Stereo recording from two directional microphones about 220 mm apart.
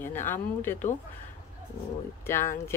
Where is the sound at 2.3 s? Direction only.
10° left (ahead or behind).